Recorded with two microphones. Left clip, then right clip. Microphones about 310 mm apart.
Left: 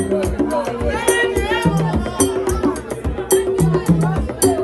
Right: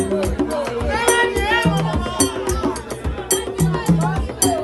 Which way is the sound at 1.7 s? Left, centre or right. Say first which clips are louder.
Left 1 dB; centre.